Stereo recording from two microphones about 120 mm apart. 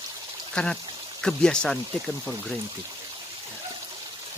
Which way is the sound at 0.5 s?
5° left (ahead or behind).